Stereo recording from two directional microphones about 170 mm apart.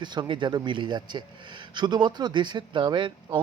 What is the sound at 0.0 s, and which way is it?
Speech, 25° right (ahead or behind).